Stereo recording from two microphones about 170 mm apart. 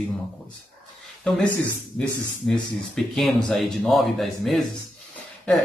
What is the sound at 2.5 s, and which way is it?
Speech, centre (ahead or behind).